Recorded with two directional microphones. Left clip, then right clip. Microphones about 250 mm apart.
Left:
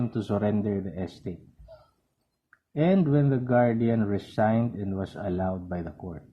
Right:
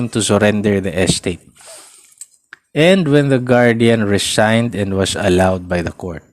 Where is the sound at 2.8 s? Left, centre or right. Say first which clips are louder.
Right 13 dB; right.